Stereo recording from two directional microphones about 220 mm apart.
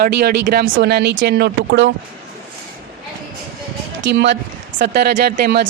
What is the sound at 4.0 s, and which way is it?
Speech, 50° right (ahead or behind).